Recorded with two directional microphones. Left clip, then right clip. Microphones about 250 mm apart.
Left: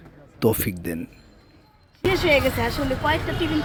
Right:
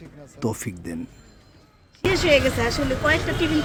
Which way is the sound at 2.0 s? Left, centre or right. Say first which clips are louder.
Right 1 dB; centre.